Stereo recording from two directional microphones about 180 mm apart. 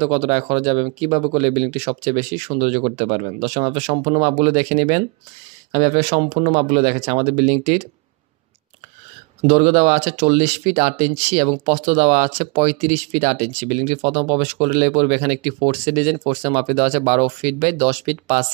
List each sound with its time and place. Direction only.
0.0 s speech: 35° right (ahead or behind)
9.5 s speech: 40° right (ahead or behind)